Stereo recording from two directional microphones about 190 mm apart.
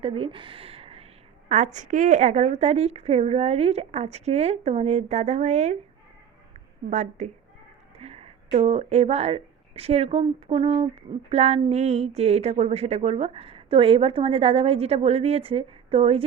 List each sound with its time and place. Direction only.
0.0 s a sound: 30° right (ahead or behind)
1.5 s speech: 40° right (ahead or behind)
6.9 s speech: 40° right (ahead or behind)